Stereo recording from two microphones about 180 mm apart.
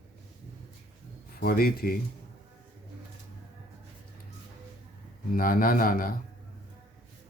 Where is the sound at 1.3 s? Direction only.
55° left (ahead or behind).